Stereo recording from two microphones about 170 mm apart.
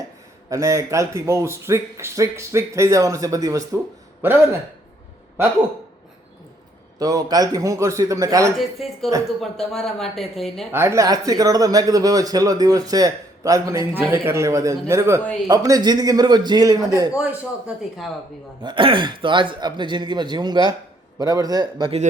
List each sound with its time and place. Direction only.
0.5 s a man's voice: 15° right (ahead or behind)
7.0 s speech: 20° right (ahead or behind)
8.5 s speech: centre (ahead or behind)
10.7 s speech: 15° right (ahead or behind)
17.2 s speech: 10° right (ahead or behind)
18.6 s speech: 30° right (ahead or behind)